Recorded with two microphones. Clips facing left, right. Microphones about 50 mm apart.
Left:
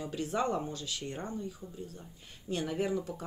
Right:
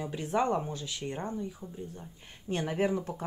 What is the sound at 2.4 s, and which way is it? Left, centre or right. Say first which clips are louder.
Speech: right 3 dB; right.